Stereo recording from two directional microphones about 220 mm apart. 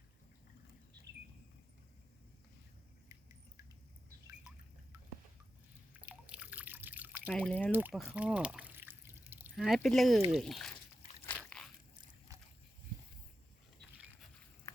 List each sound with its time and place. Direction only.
5.9 s drip: 5° right (ahead or behind)
7.3 s speech: 5° left (ahead or behind)
7.7 s speech: 10° right (ahead or behind)
8.1 s pour: 5° right (ahead or behind)
10.3 s speech: centre (ahead or behind)
11.3 s slosh: 5° left (ahead or behind)
12.3 s boat: 15° right (ahead or behind)